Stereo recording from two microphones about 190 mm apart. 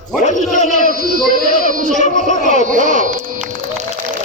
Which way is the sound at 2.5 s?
40° right (ahead or behind).